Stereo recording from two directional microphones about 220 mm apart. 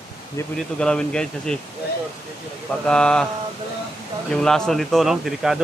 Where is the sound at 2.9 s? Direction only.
5° left (ahead or behind).